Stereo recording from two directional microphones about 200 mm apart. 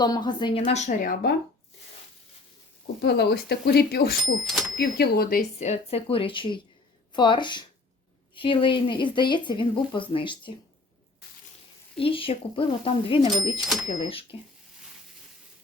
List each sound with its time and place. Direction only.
0.0 s speech: 20° left (ahead or behind); by 1.3 s 45° left (ahead or behind)
2.8 s speech: 55° left (ahead or behind)
4.4 s speech: centre (ahead or behind)
4.8 s speech: 50° left (ahead or behind); by 10.5 s 25° left (ahead or behind)
11.9 s speech: 25° left (ahead or behind)